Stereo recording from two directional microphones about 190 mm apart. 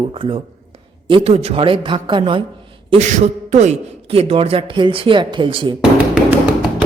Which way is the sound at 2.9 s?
40° right (ahead or behind).